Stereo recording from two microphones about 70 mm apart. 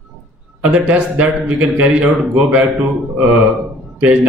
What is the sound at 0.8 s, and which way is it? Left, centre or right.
A man's voice, right.